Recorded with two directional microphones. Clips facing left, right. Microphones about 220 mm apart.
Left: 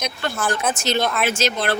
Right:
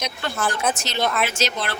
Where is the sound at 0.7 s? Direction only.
50° left (ahead or behind).